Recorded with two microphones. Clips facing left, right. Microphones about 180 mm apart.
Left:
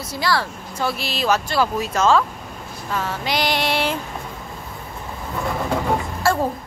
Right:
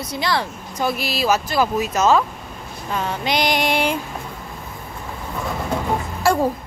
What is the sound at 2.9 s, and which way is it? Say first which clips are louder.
Female singing: right 2 dB; 20° right (ahead or behind).